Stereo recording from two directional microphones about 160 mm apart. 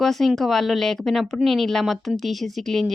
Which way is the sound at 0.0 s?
Centre (ahead or behind).